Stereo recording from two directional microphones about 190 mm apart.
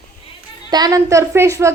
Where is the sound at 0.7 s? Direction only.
20° right (ahead or behind).